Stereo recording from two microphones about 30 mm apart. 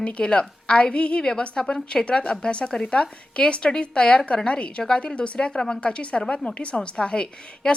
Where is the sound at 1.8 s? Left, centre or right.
Left.